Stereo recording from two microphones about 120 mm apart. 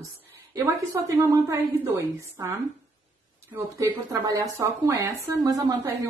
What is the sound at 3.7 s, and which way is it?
A woman's voice, 30° right (ahead or behind).